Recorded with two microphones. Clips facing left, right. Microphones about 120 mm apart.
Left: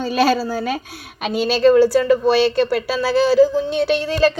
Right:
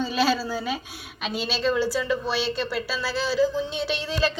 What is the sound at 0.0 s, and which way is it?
A woman's voice, 50° left (ahead or behind).